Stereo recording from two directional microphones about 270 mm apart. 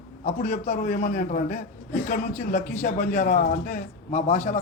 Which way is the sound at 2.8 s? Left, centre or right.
Left.